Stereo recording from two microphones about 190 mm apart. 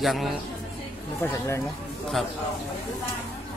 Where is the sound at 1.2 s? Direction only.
15° left (ahead or behind).